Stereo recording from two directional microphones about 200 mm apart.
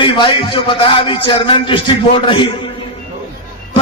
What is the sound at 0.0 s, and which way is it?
A man's voice, 25° left (ahead or behind).